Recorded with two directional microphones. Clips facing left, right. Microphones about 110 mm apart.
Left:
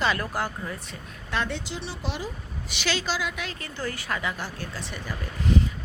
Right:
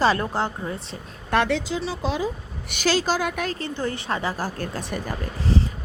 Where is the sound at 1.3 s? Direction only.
75° right (ahead or behind).